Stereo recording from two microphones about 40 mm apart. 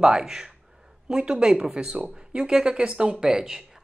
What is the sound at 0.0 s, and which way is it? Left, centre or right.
Speech, centre.